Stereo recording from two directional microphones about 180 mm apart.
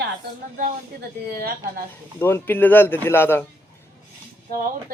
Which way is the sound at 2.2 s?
10° left (ahead or behind).